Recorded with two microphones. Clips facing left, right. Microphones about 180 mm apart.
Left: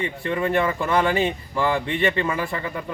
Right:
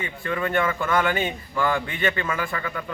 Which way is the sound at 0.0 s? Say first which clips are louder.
Left 3 dB; 30° left (ahead or behind).